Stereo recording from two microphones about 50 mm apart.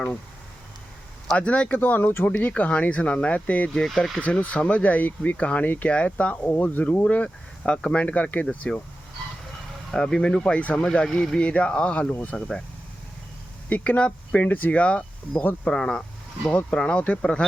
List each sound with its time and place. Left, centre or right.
1.3 s speech: left
2.0 s speech: left
2.2 s speech: left
3.8 s speech: centre
4.2 s speech: left
5.9 s speech: left
6.4 s speech: left
9.9 s speech: centre
11.0 s speech: centre
11.3 s speech: left
12.1 s speech: left
13.7 s speech: left